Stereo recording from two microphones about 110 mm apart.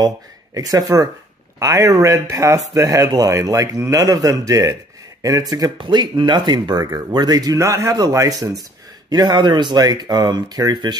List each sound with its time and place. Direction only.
0.6 s speech: 35° right (ahead or behind)
9.1 s speech: 40° right (ahead or behind)